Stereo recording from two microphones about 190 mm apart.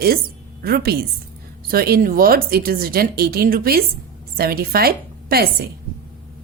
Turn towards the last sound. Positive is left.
turn(degrees=-55)  # may be behind; listen again after turning